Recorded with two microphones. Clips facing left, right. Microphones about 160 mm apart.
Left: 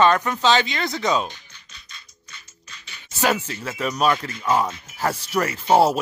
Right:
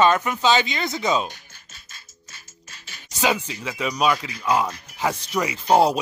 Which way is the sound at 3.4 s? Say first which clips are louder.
Left 1 dB; 10° right (ahead or behind).